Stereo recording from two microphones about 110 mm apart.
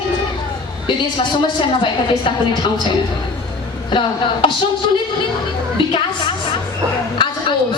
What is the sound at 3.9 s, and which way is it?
Speech, 45° left (ahead or behind).